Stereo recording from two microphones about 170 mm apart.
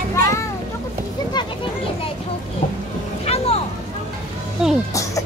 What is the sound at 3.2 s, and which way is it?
Music, 35° left (ahead or behind).